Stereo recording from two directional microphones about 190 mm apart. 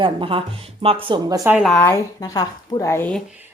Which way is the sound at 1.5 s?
Centre (ahead or behind).